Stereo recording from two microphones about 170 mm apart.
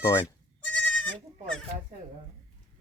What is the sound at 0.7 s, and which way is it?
Goat, 10° left (ahead or behind).